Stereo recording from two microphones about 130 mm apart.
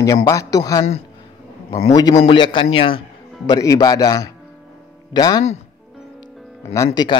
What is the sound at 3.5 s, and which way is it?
A man's voice, 25° left (ahead or behind).